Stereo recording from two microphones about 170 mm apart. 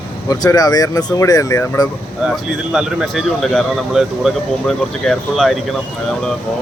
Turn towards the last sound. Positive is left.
turn(degrees=0)  # may be behind; listen again after turning